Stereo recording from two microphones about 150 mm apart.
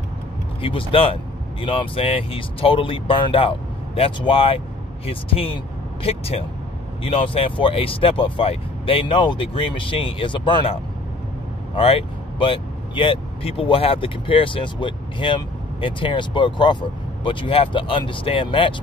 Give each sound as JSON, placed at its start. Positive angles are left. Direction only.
{"t": 0.6, "sound": "speech", "side_deg": 35}